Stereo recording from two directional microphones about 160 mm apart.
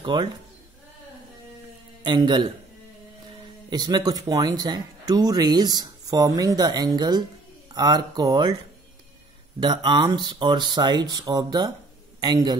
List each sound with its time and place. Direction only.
0.0 s speech: 30° right (ahead or behind)
2.0 s speech: 30° right (ahead or behind)
3.7 s speech: 25° right (ahead or behind)
9.6 s speech: 30° right (ahead or behind)